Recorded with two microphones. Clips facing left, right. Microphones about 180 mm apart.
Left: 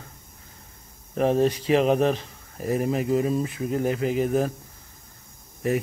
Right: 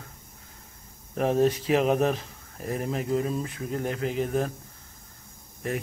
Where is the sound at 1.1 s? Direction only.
Centre (ahead or behind).